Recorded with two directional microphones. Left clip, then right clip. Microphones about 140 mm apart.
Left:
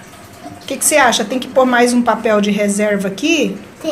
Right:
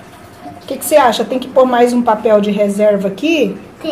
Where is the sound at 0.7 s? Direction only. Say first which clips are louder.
Right 2 dB; 5° right (ahead or behind).